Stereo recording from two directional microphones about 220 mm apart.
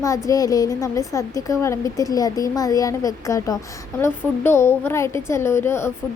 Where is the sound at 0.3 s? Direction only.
15° left (ahead or behind).